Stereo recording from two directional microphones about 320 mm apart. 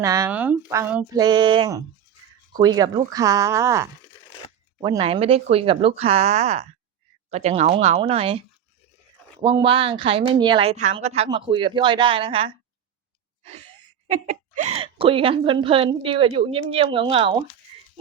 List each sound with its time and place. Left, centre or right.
0.0 s a woman's voice: centre
9.4 s a woman's voice: centre
14.3 s a woman's voice: right